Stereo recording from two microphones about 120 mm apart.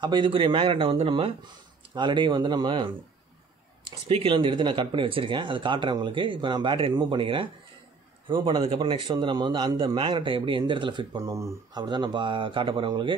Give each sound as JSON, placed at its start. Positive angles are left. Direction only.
{"t": 0.0, "sound": "speech", "side_deg": -40}
{"t": 3.8, "sound": "speech", "side_deg": -55}
{"t": 4.3, "sound": "speech", "side_deg": -40}
{"t": 11.2, "sound": "speech", "side_deg": -25}
{"t": 11.8, "sound": "speech", "side_deg": -40}